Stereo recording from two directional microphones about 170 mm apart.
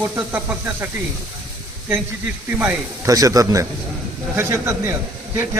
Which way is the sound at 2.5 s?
15° right (ahead or behind).